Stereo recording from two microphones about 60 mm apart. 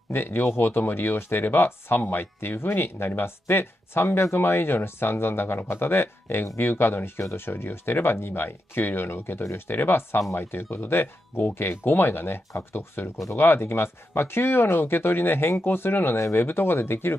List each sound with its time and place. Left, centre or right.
0.1 s speech: left
16.2 s speech: left
16.4 s speech: left